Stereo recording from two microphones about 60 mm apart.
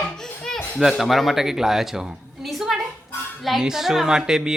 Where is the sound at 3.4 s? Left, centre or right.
Centre.